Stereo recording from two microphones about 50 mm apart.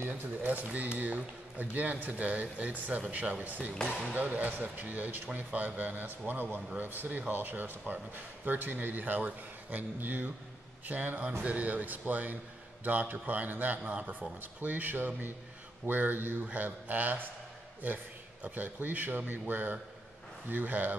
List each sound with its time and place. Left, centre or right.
0.1 s speech: right
18.4 s speech: right